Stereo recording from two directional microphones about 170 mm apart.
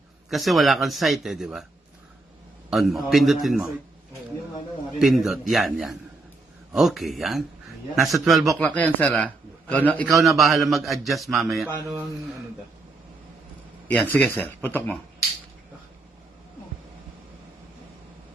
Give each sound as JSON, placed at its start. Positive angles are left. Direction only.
{"t": 0.3, "sound": "speech", "side_deg": 0}
{"t": 2.6, "sound": "speech", "side_deg": 0}
{"t": 4.9, "sound": "speech", "side_deg": 0}
{"t": 13.8, "sound": "speech", "side_deg": 10}